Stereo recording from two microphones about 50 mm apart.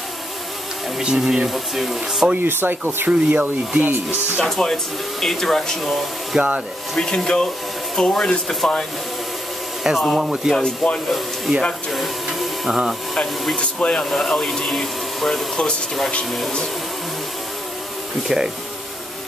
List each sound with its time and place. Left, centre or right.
1.0 s speech: centre
2.3 s speech: right
3.1 s speech: right
4.6 s speech: centre
6.3 s speech: centre
7.2 s speech: centre
9.8 s speech: centre
10.5 s speech: centre
11.1 s speech: centre
12.3 s printer: centre
13.6 s speech: left
14.1 s speech: centre
18.3 s speech: centre